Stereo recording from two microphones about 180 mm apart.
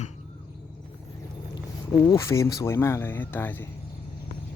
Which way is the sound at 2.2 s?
15° left (ahead or behind).